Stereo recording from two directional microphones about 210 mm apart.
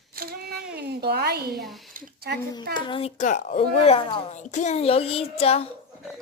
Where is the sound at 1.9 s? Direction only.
45° right (ahead or behind).